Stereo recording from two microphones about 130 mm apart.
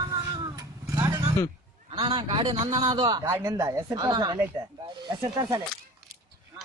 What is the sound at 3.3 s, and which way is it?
Speech, 20° right (ahead or behind).